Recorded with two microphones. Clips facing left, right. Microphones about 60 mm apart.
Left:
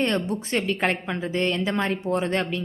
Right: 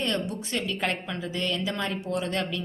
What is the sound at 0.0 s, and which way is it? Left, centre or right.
A woman's voice, left.